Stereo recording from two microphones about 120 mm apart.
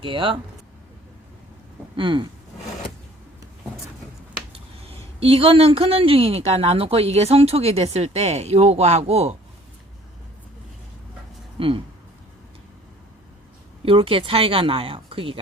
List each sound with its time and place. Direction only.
0.0 s speech: 45° right (ahead or behind)
2.0 s speech: 45° right (ahead or behind)
4.5 s speech: 50° right (ahead or behind)
11.6 s speech: 50° right (ahead or behind)
13.8 s speech: 50° right (ahead or behind)